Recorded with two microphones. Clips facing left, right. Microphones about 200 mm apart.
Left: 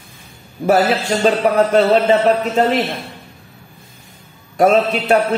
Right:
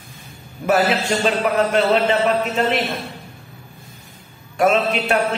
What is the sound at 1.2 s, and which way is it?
A man's voice, 35° left (ahead or behind).